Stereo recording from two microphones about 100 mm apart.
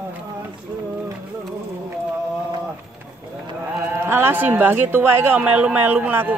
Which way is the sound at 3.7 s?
25° right (ahead or behind).